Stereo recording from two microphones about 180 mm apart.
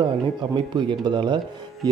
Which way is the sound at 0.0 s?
25° right (ahead or behind).